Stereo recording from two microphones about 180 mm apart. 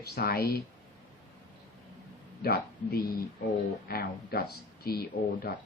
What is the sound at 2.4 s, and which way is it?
Speech, 60° left (ahead or behind).